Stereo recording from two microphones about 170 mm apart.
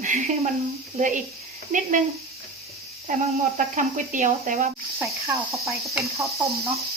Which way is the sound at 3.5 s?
50° right (ahead or behind).